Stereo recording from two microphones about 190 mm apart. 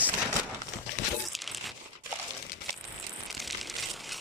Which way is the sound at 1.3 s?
Centre (ahead or behind).